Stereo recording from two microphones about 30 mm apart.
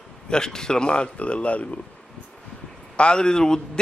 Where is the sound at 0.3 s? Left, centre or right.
Left.